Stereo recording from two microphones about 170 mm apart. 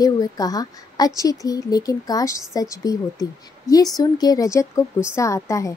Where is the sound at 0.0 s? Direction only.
20° left (ahead or behind).